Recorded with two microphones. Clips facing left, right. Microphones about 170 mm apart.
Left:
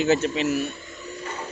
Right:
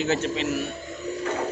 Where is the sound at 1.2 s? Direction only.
70° right (ahead or behind).